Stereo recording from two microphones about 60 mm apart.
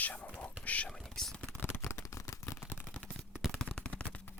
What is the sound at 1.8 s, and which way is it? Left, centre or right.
Shuffling cards, left.